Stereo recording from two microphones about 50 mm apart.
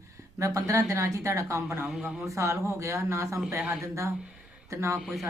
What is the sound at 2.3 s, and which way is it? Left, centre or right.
Speech, right.